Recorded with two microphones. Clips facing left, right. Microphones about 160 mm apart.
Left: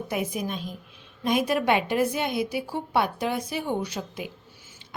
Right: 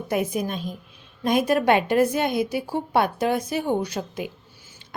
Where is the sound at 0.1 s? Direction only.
45° right (ahead or behind).